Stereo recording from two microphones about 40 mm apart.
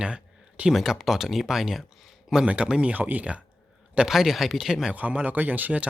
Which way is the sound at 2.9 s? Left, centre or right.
Right.